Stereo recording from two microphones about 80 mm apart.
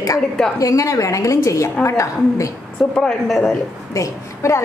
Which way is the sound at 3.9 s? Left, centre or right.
Left.